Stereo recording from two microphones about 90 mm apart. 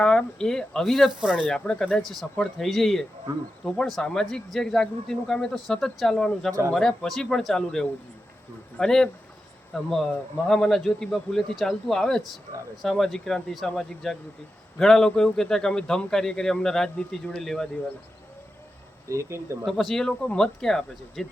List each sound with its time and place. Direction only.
0.0 s a man's voice: 10° left (ahead or behind); by 1.5 s 5° right (ahead or behind)
1.5 s a man's voice: 10° left (ahead or behind)
6.5 s speech: 35° right (ahead or behind)
6.7 s a man's voice: 5° left (ahead or behind)
19.0 s speech: 30° right (ahead or behind)
19.6 s a man's voice: centre (ahead or behind)